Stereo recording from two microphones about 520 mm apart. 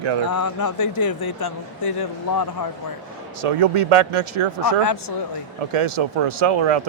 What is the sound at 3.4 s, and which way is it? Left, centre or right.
A man's voice, right.